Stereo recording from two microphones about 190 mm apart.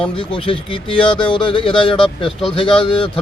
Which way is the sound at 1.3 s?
25° left (ahead or behind).